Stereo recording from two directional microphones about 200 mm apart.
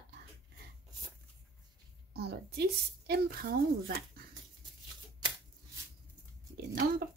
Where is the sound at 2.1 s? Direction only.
55° right (ahead or behind).